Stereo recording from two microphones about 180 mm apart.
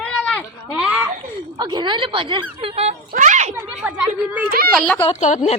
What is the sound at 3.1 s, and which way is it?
Speech, 45° right (ahead or behind).